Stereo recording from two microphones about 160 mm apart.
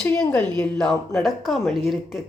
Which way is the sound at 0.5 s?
5° left (ahead or behind).